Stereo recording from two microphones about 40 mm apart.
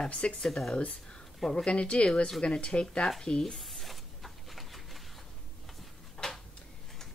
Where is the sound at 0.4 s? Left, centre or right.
Centre.